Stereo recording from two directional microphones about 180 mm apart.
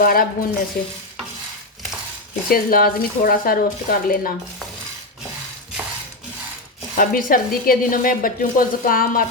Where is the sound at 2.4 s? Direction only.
55° left (ahead or behind).